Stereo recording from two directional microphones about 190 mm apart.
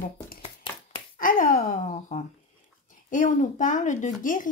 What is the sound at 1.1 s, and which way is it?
Speech, 45° left (ahead or behind).